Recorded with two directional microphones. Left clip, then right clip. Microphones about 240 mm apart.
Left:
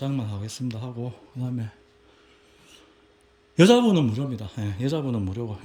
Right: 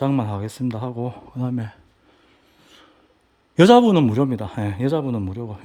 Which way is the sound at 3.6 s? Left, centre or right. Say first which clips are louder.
Right 5 dB; centre.